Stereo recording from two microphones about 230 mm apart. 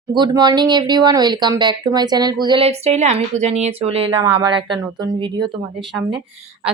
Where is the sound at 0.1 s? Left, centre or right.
Centre.